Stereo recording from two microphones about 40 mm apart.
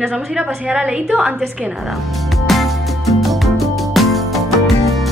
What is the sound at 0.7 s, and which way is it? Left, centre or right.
Speech, right.